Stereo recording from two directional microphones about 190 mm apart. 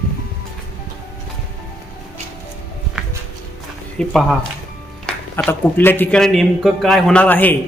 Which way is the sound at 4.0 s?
Centre (ahead or behind).